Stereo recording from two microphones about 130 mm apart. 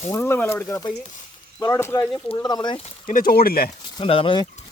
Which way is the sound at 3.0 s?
90° left.